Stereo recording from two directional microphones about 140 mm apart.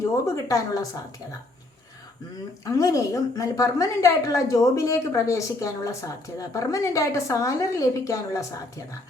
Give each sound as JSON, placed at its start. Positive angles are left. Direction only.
{"t": 0.0, "sound": "a woman's voice", "side_deg": 20}
{"t": 2.6, "sound": "a woman's voice", "side_deg": 25}